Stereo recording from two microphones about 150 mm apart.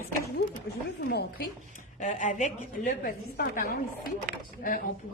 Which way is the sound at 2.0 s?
55° left (ahead or behind).